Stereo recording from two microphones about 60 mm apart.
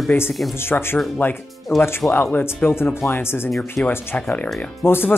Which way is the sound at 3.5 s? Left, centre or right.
Centre.